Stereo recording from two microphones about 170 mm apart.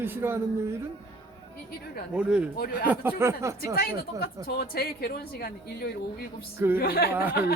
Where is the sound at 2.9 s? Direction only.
15° right (ahead or behind).